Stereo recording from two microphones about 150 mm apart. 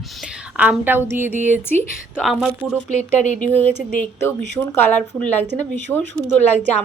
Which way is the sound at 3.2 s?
50° left (ahead or behind).